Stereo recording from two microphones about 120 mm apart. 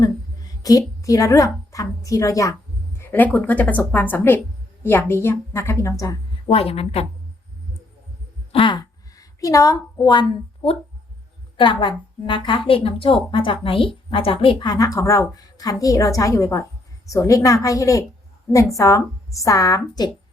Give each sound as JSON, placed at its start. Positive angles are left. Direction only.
{"t": 0.0, "sound": "a sound", "side_deg": 30}
{"t": 1.7, "sound": "a woman's voice", "side_deg": 30}
{"t": 3.0, "sound": "a woman's voice", "side_deg": 15}
{"t": 6.5, "sound": "speech", "side_deg": 55}
{"t": 8.5, "sound": "a sound", "side_deg": 40}
{"t": 10.1, "sound": "a woman's voice", "side_deg": 40}
{"t": 14.7, "sound": "a woman's voice", "side_deg": 30}